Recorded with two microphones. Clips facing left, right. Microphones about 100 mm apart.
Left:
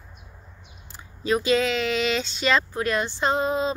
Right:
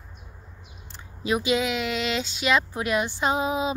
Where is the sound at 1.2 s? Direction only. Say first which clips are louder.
Left 2 dB; 10° right (ahead or behind).